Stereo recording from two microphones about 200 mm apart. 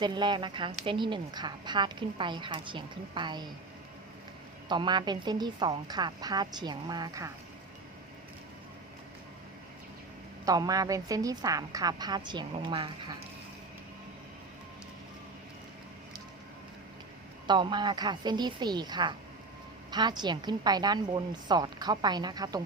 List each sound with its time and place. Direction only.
0.0 s a woman's voice: 20° right (ahead or behind)
4.7 s a woman's voice: 20° right (ahead or behind)
10.4 s a woman's voice: 20° right (ahead or behind)
17.4 s a woman's voice: 25° right (ahead or behind)